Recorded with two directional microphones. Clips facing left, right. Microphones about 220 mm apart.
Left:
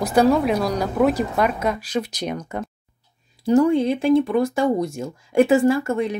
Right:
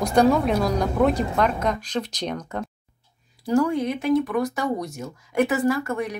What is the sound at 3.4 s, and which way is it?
Speech, 20° left (ahead or behind).